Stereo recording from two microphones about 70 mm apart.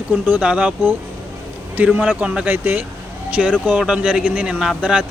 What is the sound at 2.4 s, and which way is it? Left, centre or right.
Speech, right.